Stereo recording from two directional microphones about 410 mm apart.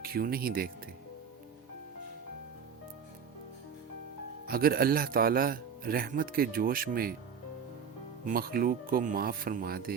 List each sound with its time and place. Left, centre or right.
0.0 s speech: right
4.4 s speech: right
8.2 s speech: right